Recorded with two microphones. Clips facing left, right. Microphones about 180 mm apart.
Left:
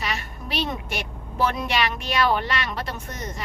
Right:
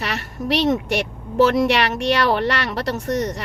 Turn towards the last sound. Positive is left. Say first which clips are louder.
# right 11 dB
turn(degrees=-75)  # may be behind; listen again after turning